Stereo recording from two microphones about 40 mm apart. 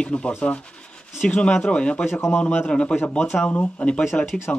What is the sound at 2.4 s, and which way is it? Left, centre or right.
Speech, left.